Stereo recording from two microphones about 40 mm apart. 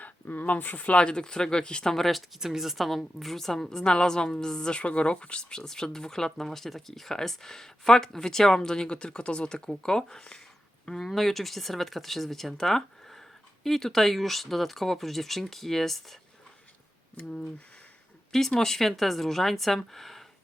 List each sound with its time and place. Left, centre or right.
0.4 s speech: left
0.9 s speech: left
2.4 s a woman's voice: centre
18.3 s speech: centre